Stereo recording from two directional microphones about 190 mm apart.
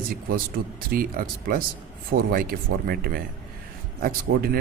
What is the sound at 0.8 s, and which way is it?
Speech, 50° right (ahead or behind).